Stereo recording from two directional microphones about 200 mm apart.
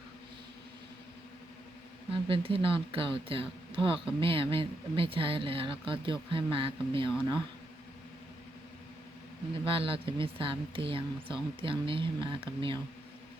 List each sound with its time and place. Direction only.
2.2 s speech: 25° right (ahead or behind)
9.6 s speech: 25° right (ahead or behind)